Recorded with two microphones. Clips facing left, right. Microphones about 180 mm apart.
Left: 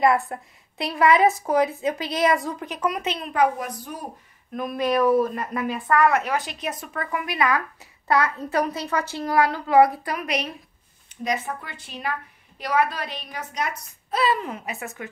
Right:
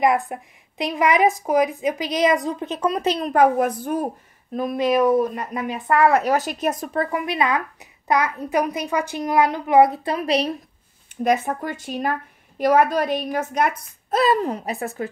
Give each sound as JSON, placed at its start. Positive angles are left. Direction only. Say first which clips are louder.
{"t": 0.0, "sound": "speech", "louder": "right 1 dB", "side_deg": -20}
{"t": 4.6, "sound": "speech", "louder": "right 3 dB", "side_deg": -20}
{"t": 11.2, "sound": "a woman's voice", "louder": "right 7 dB", "side_deg": -45}